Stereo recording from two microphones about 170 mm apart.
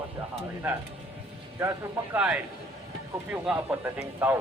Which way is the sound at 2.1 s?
5° right (ahead or behind).